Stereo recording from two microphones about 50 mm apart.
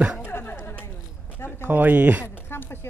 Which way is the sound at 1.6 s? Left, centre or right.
Right.